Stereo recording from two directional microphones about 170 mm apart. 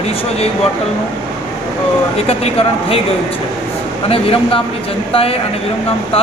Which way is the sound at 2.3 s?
35° left (ahead or behind).